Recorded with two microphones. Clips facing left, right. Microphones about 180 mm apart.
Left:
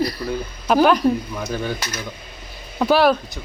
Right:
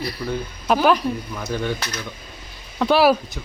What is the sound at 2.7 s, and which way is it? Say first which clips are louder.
Speech: even; centre (ahead or behind).